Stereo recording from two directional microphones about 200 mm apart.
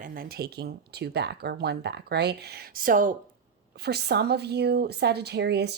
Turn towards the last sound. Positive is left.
turn(degrees=-55)  # may be behind; listen again after turning